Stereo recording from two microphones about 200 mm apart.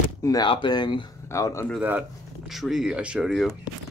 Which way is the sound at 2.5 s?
Centre (ahead or behind).